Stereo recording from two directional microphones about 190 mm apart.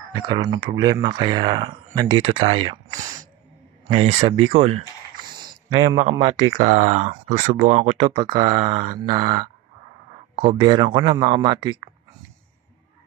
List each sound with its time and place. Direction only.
0.1 s speech: 20° right (ahead or behind)
2.7 s a sound: 20° right (ahead or behind)
3.9 s speech: 30° right (ahead or behind)
5.3 s a sound: 25° right (ahead or behind)
6.1 s speech: 25° right (ahead or behind)
6.6 s speech: 35° right (ahead or behind)